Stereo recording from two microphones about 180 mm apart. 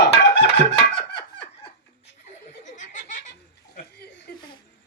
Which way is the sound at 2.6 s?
45° left (ahead or behind).